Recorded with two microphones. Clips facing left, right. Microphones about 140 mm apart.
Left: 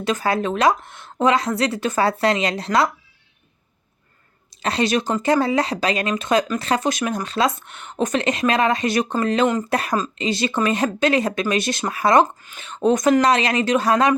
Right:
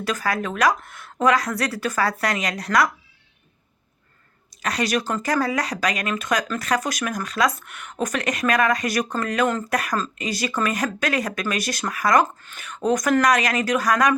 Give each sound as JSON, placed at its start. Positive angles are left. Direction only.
{"t": 0.0, "sound": "a woman's voice", "side_deg": 25}
{"t": 4.6, "sound": "a woman's voice", "side_deg": 25}